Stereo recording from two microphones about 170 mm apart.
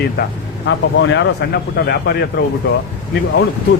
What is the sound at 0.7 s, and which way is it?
Speech, 90° left.